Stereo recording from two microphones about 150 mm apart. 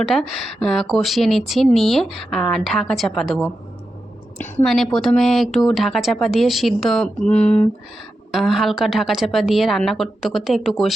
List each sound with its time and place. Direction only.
0.0 s speech: centre (ahead or behind)
4.6 s speech: centre (ahead or behind)